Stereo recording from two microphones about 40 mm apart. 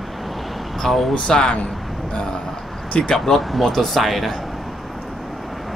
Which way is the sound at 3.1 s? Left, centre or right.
Centre.